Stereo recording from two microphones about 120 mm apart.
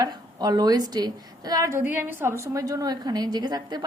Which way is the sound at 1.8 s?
15° right (ahead or behind).